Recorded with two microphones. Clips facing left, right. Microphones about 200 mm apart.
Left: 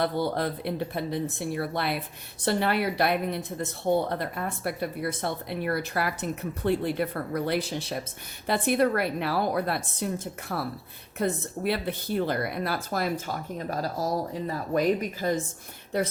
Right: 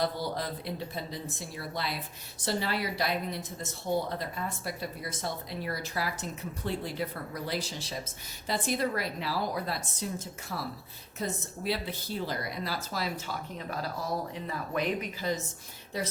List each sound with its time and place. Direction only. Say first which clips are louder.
0.0 s speech: left 5 dB; 60° left (ahead or behind)